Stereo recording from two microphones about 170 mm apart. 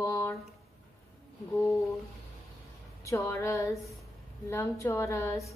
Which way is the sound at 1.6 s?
Centre (ahead or behind).